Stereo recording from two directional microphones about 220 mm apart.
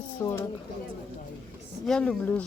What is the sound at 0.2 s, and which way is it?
Speech, 10° left (ahead or behind).